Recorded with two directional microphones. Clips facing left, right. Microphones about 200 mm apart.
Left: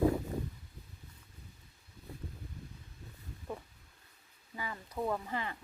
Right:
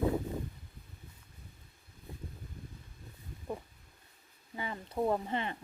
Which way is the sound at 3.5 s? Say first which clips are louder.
Right 3 dB; 15° right (ahead or behind).